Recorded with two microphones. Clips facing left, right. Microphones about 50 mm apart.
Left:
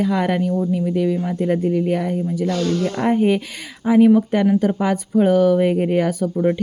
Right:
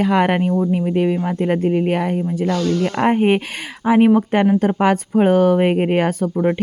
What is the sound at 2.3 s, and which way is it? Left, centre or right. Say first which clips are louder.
Speech: right 1 dB; right.